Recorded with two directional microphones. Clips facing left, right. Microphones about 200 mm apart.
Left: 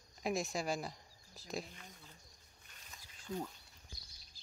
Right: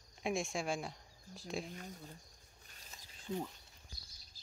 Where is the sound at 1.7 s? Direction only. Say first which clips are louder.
Right 8 dB; 45° right (ahead or behind).